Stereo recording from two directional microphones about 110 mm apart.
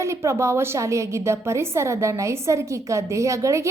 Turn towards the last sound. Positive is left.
turn(degrees=-25)  # may be behind; listen again after turning